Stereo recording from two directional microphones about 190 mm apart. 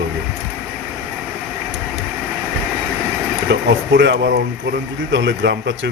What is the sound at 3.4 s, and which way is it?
Speech, 70° right (ahead or behind).